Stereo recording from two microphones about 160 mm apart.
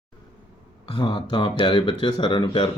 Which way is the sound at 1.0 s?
30° left (ahead or behind).